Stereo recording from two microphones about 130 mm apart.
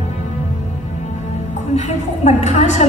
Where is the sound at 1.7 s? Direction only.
60° left (ahead or behind).